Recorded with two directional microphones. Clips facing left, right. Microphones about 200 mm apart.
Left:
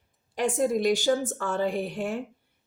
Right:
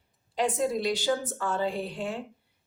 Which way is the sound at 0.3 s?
50° left (ahead or behind).